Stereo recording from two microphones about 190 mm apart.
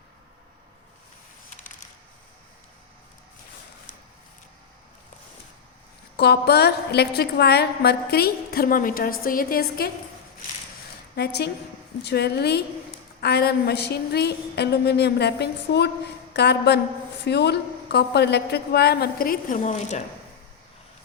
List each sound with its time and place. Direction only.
6.1 s a woman's voice: 60° left (ahead or behind)
11.1 s a woman's voice: 60° left (ahead or behind); by 20.0 s 40° left (ahead or behind)